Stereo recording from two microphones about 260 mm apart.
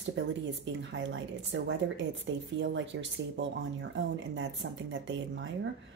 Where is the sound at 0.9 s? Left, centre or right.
Right.